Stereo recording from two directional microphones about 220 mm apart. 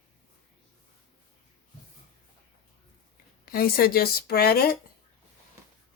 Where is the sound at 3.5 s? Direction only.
40° left (ahead or behind).